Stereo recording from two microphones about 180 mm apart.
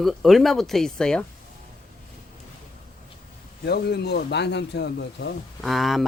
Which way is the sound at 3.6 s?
65° left (ahead or behind).